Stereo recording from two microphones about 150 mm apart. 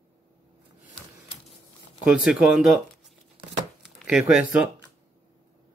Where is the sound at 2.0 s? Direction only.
5° right (ahead or behind).